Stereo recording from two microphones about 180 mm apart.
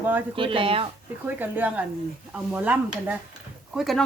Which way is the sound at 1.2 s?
10° right (ahead or behind).